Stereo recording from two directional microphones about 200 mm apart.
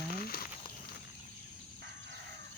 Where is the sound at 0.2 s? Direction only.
50° left (ahead or behind).